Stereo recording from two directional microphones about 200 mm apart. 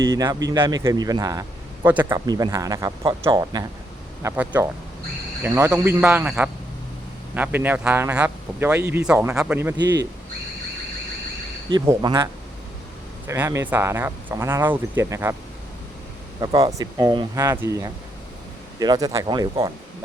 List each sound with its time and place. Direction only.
0.0 s a man's voice: 15° right (ahead or behind)
9.7 s speech: 60° right (ahead or behind)
11.7 s a man's voice: 20° right (ahead or behind)
16.4 s a man's voice: 20° right (ahead or behind)